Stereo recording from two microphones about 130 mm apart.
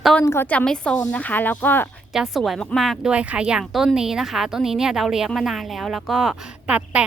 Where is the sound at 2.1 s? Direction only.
Centre (ahead or behind).